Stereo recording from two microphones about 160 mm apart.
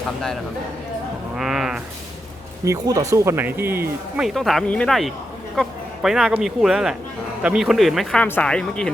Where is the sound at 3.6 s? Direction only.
70° right (ahead or behind).